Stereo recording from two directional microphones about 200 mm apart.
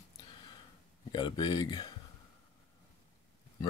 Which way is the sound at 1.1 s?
20° left (ahead or behind).